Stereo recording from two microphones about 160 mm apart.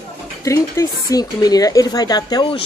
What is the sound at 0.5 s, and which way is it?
Speech, 20° left (ahead or behind).